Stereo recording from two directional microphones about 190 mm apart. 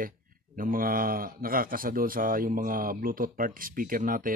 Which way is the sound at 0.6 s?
50° right (ahead or behind).